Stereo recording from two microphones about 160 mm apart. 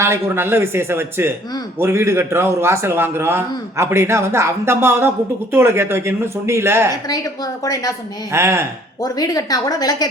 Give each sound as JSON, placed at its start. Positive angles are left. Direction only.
{"t": 0.0, "sound": "a man's voice", "side_deg": -15}
{"t": 6.9, "sound": "a woman's voice", "side_deg": 25}
{"t": 8.3, "sound": "a man's voice", "side_deg": -15}
{"t": 9.0, "sound": "a woman's voice", "side_deg": 25}